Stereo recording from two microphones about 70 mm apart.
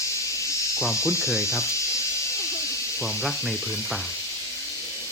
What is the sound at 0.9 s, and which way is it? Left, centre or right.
Speech, left.